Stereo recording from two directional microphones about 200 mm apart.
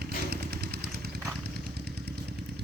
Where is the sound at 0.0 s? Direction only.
55° right (ahead or behind).